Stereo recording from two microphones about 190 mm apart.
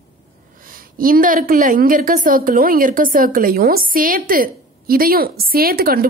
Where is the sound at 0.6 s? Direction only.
45° right (ahead or behind).